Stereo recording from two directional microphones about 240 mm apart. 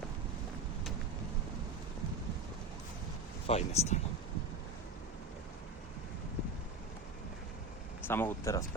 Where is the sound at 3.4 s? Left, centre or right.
Left.